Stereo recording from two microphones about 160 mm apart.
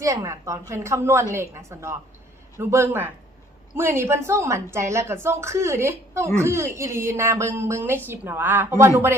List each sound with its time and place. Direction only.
0.0 s a woman's voice: 20° right (ahead or behind)